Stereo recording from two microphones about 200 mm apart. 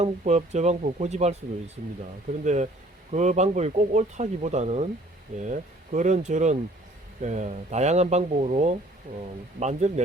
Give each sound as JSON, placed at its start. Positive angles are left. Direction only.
{"t": 0.0, "sound": "speech", "side_deg": -35}